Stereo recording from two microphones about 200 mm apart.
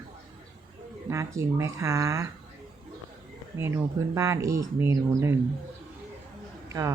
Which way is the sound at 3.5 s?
15° right (ahead or behind).